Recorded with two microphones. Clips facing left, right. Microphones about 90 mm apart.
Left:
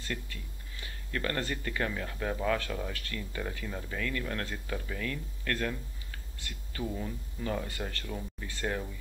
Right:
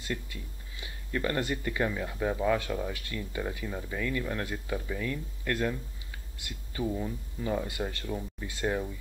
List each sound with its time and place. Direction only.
0.0 s speech: 15° right (ahead or behind)